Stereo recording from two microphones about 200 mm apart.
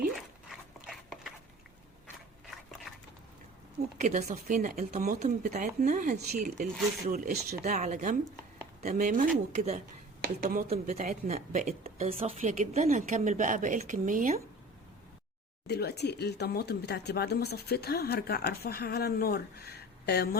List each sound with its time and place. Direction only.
0.2 s a sound: centre (ahead or behind)
4.0 s speech: 35° right (ahead or behind)
15.6 s speech: 55° left (ahead or behind)